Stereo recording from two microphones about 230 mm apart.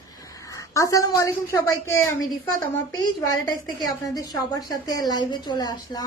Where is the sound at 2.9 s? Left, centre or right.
Centre.